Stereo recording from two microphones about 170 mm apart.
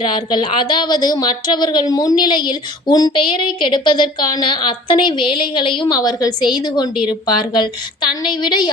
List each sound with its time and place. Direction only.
0.0 s speech: 25° left (ahead or behind)